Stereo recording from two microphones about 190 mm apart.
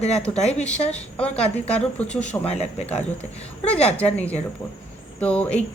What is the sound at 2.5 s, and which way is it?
Speech, 35° left (ahead or behind).